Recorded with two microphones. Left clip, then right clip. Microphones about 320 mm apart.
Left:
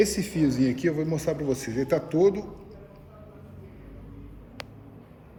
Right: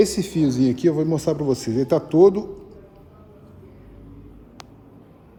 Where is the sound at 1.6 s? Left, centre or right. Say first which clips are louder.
Right 6 dB; right.